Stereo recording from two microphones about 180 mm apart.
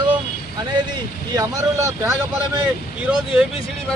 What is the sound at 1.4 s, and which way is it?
Speech, 15° right (ahead or behind).